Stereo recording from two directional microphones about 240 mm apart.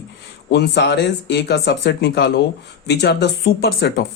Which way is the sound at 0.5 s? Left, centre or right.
Left.